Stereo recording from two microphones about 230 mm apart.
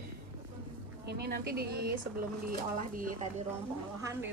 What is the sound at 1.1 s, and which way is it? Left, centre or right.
Speech, right.